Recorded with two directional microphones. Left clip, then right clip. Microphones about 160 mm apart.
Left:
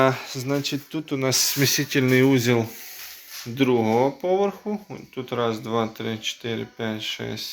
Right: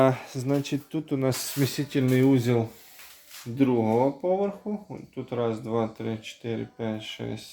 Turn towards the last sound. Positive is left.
turn(degrees=-15)  # may be behind; listen again after turning